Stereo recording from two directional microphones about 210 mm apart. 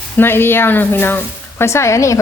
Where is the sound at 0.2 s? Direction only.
10° left (ahead or behind).